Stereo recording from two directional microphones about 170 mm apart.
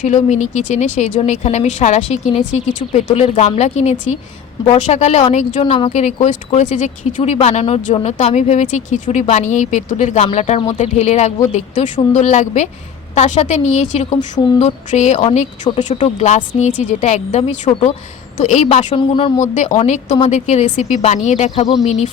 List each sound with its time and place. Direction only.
0.0 s speech: 45° left (ahead or behind)
14.3 s a sound: 25° left (ahead or behind)
14.6 s speech: 45° left (ahead or behind)
18.9 s speech: 30° left (ahead or behind)
19.4 s speech: 45° left (ahead or behind)